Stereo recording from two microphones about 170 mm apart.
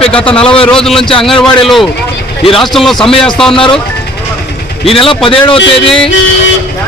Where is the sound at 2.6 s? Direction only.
Centre (ahead or behind).